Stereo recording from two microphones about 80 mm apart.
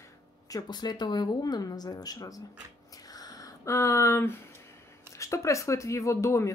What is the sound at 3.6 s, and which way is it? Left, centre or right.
Speech, left.